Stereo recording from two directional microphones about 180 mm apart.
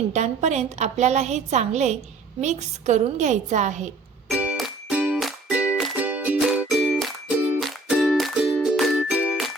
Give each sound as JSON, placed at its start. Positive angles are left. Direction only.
{"t": 0.1, "sound": "a woman's voice", "side_deg": -40}
{"t": 4.4, "sound": "music", "side_deg": -5}